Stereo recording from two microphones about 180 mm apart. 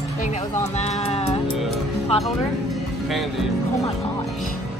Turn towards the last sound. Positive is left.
turn(degrees=0)  # may be behind; listen again after turning